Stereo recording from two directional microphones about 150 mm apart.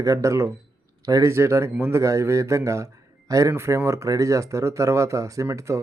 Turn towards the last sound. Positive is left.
turn(degrees=-20)  # may be behind; listen again after turning